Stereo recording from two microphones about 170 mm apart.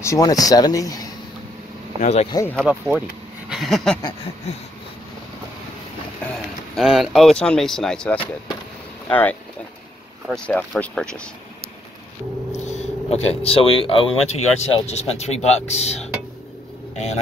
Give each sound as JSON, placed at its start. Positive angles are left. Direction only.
{"t": 0.0, "sound": "speech", "side_deg": 20}
{"t": 2.0, "sound": "speech", "side_deg": 40}
{"t": 2.5, "sound": "speech", "side_deg": 0}
{"t": 3.4, "sound": "a sound", "side_deg": 0}
{"t": 6.2, "sound": "speech", "side_deg": 0}
{"t": 12.5, "sound": "speech", "side_deg": 40}